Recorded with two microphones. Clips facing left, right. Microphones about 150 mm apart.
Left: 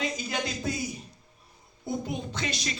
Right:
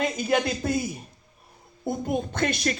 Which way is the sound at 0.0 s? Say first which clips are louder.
Right 7 dB; 55° right (ahead or behind).